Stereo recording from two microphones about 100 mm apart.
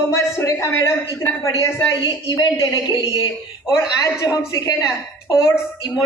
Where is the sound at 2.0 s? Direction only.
40° left (ahead or behind).